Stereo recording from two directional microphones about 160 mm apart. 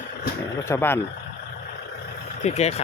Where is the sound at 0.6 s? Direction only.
15° left (ahead or behind).